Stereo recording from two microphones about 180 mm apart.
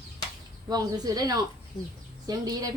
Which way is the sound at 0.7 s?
20° right (ahead or behind).